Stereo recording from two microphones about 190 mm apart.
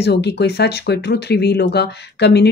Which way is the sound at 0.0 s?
60° left (ahead or behind).